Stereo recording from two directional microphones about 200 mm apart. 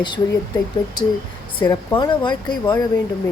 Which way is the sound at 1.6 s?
20° left (ahead or behind).